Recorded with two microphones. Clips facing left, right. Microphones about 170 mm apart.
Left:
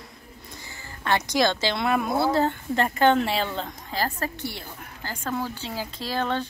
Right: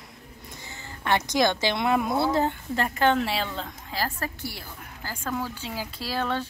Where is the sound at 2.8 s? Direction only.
Centre (ahead or behind).